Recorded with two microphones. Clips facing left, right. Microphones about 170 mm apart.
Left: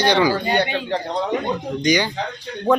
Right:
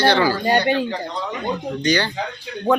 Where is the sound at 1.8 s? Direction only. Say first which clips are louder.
Left 1 dB; 10° left (ahead or behind).